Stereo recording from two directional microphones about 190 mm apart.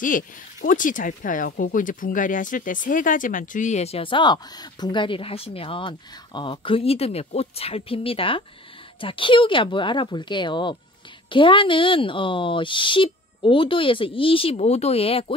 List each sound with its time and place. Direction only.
0.0 s speech: 45° left (ahead or behind); by 15.3 s 30° left (ahead or behind)